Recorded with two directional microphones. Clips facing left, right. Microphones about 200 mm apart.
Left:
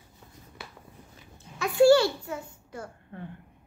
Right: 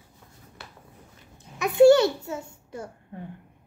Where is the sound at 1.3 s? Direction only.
20° right (ahead or behind).